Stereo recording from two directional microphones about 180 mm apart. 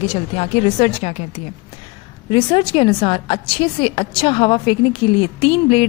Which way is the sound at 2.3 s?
30° left (ahead or behind).